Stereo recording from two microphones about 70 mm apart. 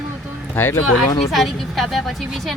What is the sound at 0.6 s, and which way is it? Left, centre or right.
Speech, left.